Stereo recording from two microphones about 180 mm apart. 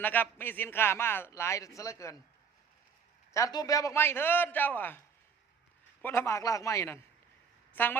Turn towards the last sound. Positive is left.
turn(degrees=10)  # may be behind; listen again after turning